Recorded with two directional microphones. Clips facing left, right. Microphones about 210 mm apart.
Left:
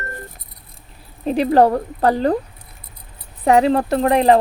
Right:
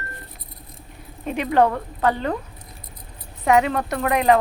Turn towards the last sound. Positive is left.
turn(degrees=30)  # may be behind; listen again after turning